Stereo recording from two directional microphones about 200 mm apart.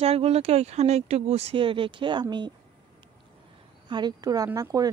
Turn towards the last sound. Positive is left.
turn(degrees=-15)  # may be behind; listen again after turning